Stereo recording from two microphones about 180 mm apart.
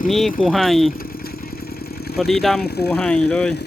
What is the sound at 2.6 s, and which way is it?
Speech, 65° left (ahead or behind).